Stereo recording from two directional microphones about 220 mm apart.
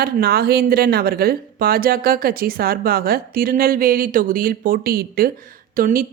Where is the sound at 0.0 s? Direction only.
45° right (ahead or behind).